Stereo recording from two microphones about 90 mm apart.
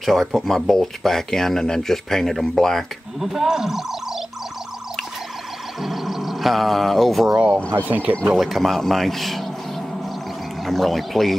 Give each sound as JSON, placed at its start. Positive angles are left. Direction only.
{"t": 0.0, "sound": "speech", "side_deg": 0}
{"t": 5.8, "sound": "speech", "side_deg": 0}
{"t": 7.3, "sound": "speech", "side_deg": -20}
{"t": 8.4, "sound": "speech", "side_deg": 0}
{"t": 10.6, "sound": "speech", "side_deg": 0}